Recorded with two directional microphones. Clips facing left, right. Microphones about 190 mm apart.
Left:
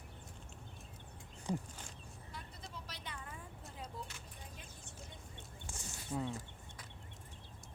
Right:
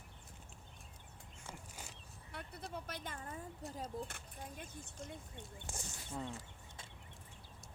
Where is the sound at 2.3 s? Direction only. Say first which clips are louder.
Right 6 dB; 60° right (ahead or behind); by 4.1 s 40° right (ahead or behind).